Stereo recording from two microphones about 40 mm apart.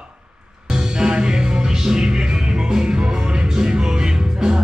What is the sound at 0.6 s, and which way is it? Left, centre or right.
Music, centre.